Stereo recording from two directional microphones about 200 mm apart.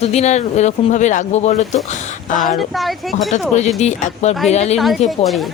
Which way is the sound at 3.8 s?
35° left (ahead or behind).